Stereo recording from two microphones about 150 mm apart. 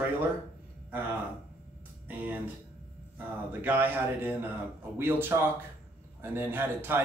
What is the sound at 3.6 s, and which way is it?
Speech, 15° right (ahead or behind).